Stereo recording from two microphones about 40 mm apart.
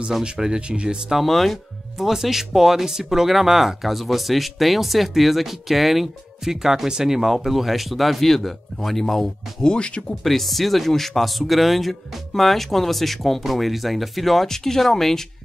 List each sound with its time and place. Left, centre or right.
0.2 s speech: right
1.1 s speech: centre
2.0 s speech: centre
9.6 s speech: left
10.2 s speech: centre